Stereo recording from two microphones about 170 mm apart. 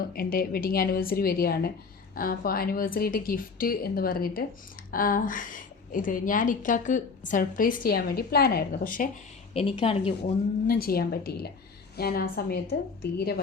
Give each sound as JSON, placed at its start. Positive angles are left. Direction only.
{"t": 0.1, "sound": "a woman's voice", "side_deg": 60}
{"t": 9.5, "sound": "speech", "side_deg": 35}
{"t": 10.7, "sound": "a woman's voice", "side_deg": 60}